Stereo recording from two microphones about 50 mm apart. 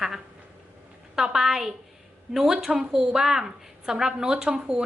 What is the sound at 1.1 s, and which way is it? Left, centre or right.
A woman's voice, centre.